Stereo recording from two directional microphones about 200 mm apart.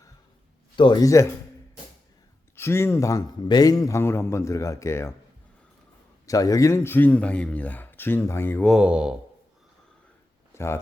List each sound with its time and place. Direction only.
0.8 s a man's voice: 20° left (ahead or behind)
2.6 s a man's voice: 10° left (ahead or behind)
6.2 s a man's voice: 15° left (ahead or behind)
8.7 s speech: 5° right (ahead or behind)
10.5 s speech: 10° left (ahead or behind)